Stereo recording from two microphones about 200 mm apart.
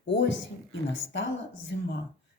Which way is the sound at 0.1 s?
65° left (ahead or behind).